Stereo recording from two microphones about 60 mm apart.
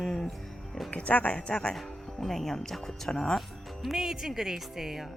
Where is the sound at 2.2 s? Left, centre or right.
Centre.